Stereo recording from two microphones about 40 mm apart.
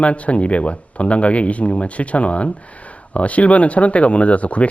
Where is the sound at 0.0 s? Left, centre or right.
Left.